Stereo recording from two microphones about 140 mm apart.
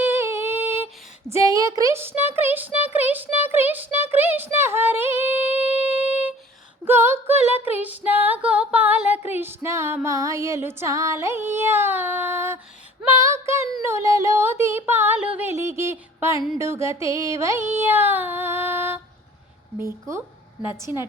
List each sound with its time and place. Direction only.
0.0 s music: 20° right (ahead or behind)
1.3 s a sound: 20° right (ahead or behind)
5.8 s humming: 10° right (ahead or behind)
6.8 s female singing: 15° right (ahead or behind)
9.3 s music: 15° right (ahead or behind)
13.0 s female singing: 20° right (ahead or behind)
13.8 s a sound: 20° right (ahead or behind)
19.8 s a woman's voice: 20° right (ahead or behind)